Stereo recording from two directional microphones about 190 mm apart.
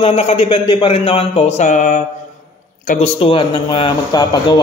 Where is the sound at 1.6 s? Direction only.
40° left (ahead or behind).